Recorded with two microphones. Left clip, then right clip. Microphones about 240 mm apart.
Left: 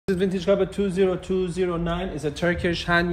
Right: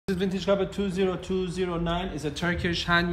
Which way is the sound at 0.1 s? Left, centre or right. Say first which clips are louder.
Left 4 dB; centre.